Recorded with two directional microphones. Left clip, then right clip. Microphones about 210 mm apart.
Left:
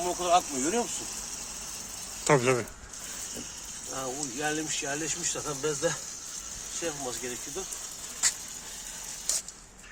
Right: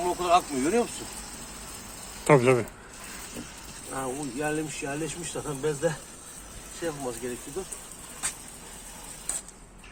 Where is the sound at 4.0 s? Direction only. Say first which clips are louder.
Right 2 dB; 15° left (ahead or behind).